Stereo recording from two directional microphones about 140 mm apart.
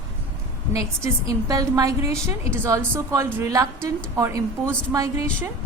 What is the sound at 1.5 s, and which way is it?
A woman's voice, 25° right (ahead or behind).